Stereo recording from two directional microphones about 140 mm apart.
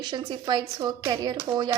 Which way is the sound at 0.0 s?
30° right (ahead or behind).